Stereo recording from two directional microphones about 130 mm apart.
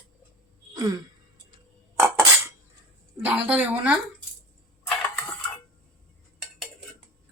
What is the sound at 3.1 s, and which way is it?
Speech, 10° right (ahead or behind).